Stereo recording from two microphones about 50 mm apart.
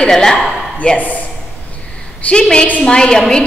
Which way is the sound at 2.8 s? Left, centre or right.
Centre.